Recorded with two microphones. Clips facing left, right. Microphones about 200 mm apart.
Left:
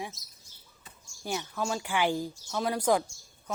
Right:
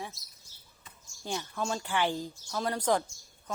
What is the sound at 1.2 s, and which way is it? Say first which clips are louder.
Speech: left 2 dB; 10° left (ahead or behind).